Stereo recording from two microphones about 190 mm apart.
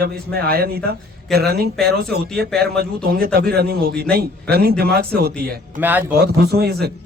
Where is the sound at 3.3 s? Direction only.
55° right (ahead or behind).